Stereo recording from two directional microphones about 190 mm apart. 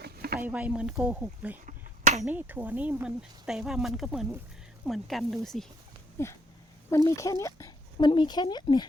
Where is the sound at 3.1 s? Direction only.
Centre (ahead or behind).